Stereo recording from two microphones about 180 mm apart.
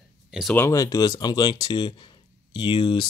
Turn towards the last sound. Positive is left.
turn(degrees=25)  # may be behind; listen again after turning